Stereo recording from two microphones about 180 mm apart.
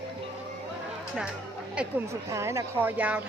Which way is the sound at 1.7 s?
5° right (ahead or behind).